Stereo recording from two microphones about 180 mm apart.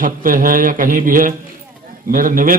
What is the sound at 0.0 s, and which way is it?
A man's voice, 50° right (ahead or behind).